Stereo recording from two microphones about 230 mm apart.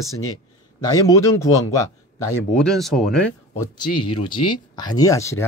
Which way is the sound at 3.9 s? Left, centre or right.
Left.